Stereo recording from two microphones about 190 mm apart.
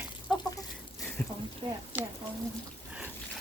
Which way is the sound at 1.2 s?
10° left (ahead or behind).